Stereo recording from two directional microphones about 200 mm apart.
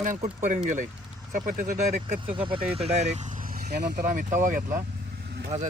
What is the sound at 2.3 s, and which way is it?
Speech, 25° right (ahead or behind).